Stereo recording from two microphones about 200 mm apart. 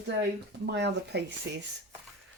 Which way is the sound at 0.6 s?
60° right (ahead or behind).